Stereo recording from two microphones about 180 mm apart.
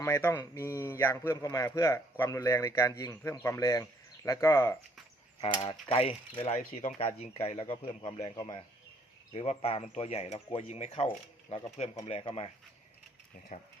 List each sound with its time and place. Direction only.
0.0 s a man's voice: 15° left (ahead or behind)
5.4 s speech: 30° left (ahead or behind)
13.5 s speech: 45° left (ahead or behind)